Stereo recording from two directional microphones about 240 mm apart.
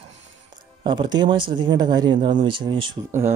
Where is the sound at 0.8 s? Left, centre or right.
Centre.